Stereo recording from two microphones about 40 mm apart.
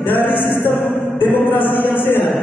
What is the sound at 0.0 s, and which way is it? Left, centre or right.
Chant, left.